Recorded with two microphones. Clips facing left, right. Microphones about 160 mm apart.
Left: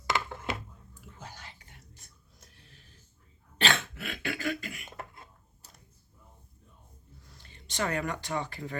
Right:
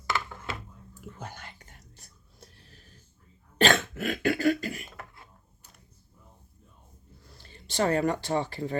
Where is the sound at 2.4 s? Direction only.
35° right (ahead or behind).